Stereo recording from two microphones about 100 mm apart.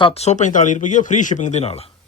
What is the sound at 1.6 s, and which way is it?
Speech, 90° left.